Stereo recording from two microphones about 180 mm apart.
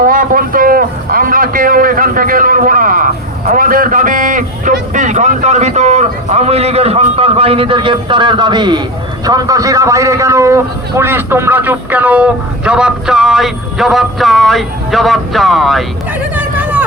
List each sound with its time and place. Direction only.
0.0 s a man's voice: 50° right (ahead or behind); by 15.8 s centre (ahead or behind)
16.3 s vehicle: 10° right (ahead or behind)